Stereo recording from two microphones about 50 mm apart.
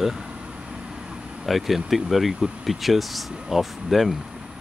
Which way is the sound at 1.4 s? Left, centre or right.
Centre.